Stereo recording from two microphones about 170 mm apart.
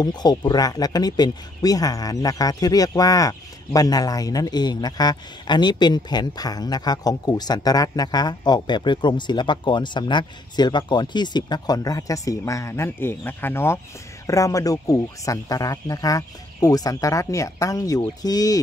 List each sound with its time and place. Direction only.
0.0 s speech: 25° left (ahead or behind)